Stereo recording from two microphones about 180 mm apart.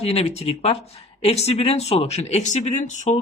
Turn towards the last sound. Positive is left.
turn(degrees=40)  # may be behind; listen again after turning